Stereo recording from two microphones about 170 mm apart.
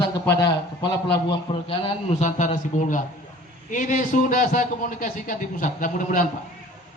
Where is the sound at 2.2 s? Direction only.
45° left (ahead or behind).